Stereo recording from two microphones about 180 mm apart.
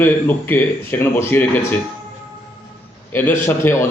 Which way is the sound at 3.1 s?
10° left (ahead or behind).